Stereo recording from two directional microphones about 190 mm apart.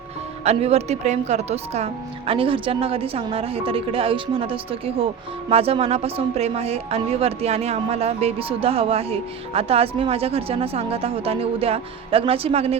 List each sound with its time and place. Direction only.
0.4 s speech: 35° right (ahead or behind)